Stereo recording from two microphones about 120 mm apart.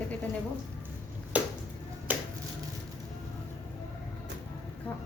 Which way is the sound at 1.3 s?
10° right (ahead or behind).